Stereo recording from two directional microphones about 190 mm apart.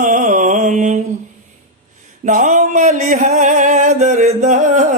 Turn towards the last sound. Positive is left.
turn(degrees=-40)  # may be behind; listen again after turning